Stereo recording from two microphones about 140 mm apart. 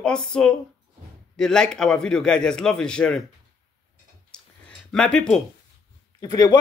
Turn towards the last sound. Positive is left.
turn(degrees=25)  # may be behind; listen again after turning